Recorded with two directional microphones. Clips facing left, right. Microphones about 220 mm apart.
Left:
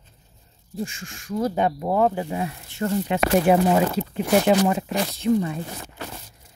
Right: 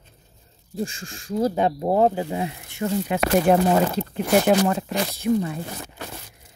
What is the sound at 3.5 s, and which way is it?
Speech, 5° left (ahead or behind).